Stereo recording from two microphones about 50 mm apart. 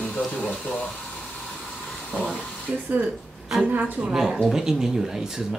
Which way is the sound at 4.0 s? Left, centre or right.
Centre.